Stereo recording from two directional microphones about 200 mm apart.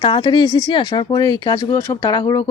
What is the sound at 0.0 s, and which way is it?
Speech, 25° left (ahead or behind).